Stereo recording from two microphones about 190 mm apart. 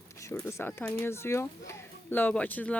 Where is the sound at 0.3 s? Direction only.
15° left (ahead or behind).